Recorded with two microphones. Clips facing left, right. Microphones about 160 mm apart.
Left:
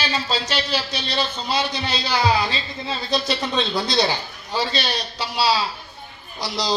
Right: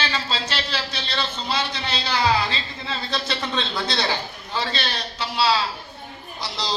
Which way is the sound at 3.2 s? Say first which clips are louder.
Left 4 dB; 25° right (ahead or behind).